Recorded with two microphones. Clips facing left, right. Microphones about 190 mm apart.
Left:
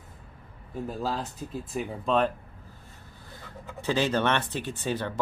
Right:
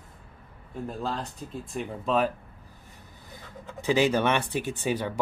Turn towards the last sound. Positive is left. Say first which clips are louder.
# right 2 dB
turn(degrees=-10)  # may be behind; listen again after turning